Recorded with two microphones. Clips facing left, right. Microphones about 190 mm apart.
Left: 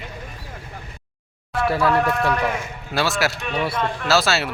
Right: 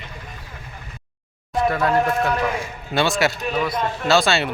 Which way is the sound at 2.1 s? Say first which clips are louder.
Even; centre (ahead or behind).